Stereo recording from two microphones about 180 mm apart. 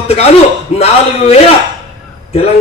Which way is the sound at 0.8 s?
35° left (ahead or behind).